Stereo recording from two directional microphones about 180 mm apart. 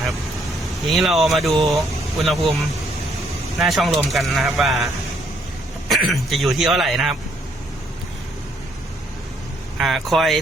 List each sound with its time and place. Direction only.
0.6 s speech: centre (ahead or behind)
3.6 s speech: centre (ahead or behind)
5.9 s speech: centre (ahead or behind)
9.7 s speech: centre (ahead or behind)